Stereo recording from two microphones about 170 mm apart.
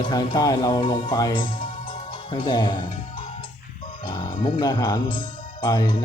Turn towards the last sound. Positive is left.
turn(degrees=25)  # may be behind; listen again after turning